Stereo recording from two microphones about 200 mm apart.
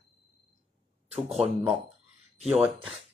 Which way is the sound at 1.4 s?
30° right (ahead or behind).